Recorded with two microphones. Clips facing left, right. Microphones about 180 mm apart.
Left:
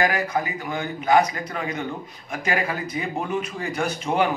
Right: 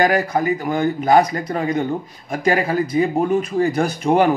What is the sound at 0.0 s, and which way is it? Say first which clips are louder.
A man's voice: right 6 dB; 40° right (ahead or behind).